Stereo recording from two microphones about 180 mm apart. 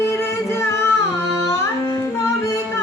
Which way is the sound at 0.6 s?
15° left (ahead or behind).